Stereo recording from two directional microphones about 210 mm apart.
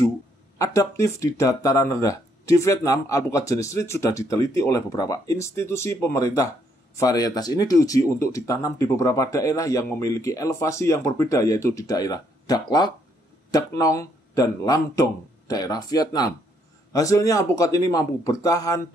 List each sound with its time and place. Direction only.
0.6 s speech: 15° left (ahead or behind)